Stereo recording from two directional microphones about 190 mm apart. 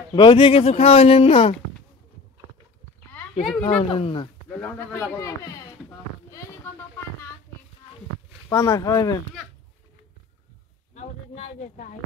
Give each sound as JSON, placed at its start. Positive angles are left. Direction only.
{"t": 0.1, "sound": "speech", "side_deg": 25}
{"t": 3.1, "sound": "a sound", "side_deg": 10}
{"t": 3.6, "sound": "speech", "side_deg": 30}
{"t": 4.5, "sound": "speech", "side_deg": 10}
{"t": 8.5, "sound": "speech", "side_deg": 15}
{"t": 11.0, "sound": "speech", "side_deg": 35}